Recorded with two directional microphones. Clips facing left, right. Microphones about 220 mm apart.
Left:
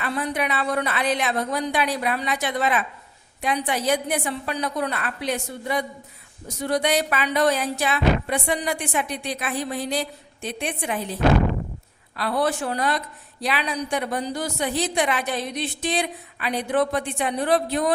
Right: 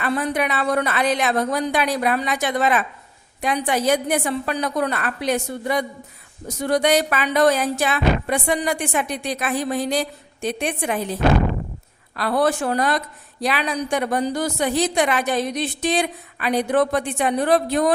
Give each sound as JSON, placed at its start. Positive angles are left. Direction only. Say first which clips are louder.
{"t": 0.0, "sound": "speech", "louder": "right 4 dB", "side_deg": -45}